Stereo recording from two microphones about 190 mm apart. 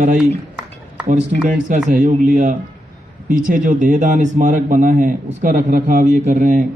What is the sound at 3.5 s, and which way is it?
A man's voice, 45° right (ahead or behind).